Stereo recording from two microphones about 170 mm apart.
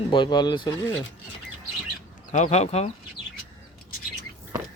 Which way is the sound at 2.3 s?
45° left (ahead or behind).